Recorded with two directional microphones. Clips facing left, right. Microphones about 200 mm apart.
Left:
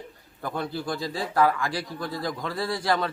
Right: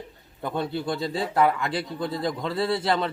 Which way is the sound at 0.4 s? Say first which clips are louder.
Right 3 dB; 25° right (ahead or behind).